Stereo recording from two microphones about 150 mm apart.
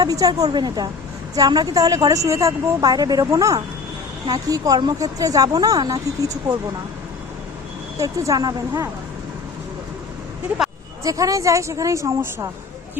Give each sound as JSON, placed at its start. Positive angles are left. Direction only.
{"t": 0.0, "sound": "speech", "side_deg": -25}
{"t": 7.9, "sound": "speech", "side_deg": -20}
{"t": 10.5, "sound": "speech", "side_deg": -10}
{"t": 11.0, "sound": "speech", "side_deg": -20}